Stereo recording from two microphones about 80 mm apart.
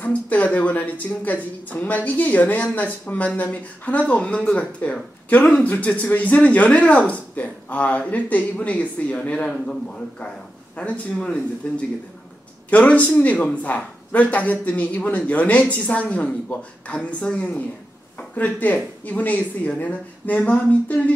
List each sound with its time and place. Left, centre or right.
0.0 s speech: centre